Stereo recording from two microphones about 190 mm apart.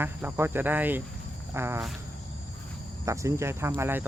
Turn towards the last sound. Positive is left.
turn(degrees=-10)  # may be behind; listen again after turning